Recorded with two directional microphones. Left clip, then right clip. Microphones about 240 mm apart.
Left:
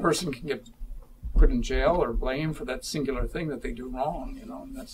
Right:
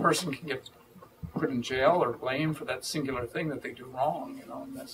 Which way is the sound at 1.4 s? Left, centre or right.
Centre.